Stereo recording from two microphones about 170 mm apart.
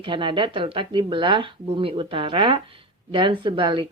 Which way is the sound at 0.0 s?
30° right (ahead or behind).